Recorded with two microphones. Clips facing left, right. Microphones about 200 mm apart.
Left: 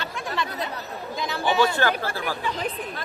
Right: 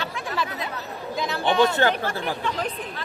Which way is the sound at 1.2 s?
Centre (ahead or behind).